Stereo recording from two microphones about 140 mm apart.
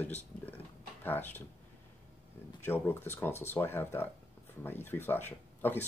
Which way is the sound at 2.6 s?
15° left (ahead or behind).